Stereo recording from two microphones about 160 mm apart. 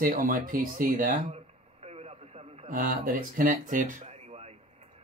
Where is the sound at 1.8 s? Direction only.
40° right (ahead or behind).